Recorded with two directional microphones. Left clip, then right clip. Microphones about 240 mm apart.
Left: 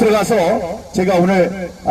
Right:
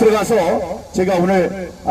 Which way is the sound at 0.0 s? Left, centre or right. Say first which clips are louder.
Even; left.